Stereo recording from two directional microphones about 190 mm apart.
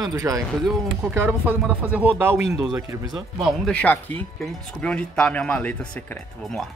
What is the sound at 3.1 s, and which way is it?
Speech, centre (ahead or behind).